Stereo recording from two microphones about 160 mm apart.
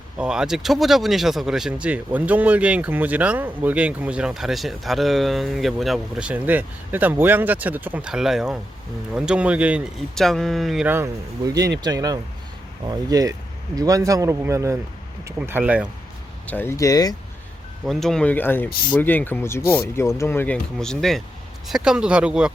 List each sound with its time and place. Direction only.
0.2 s speech: 5° right (ahead or behind)
10.2 s speech: centre (ahead or behind)
10.8 s speech: 15° right (ahead or behind)
16.5 s speech: 15° left (ahead or behind)
17.8 s speech: centre (ahead or behind)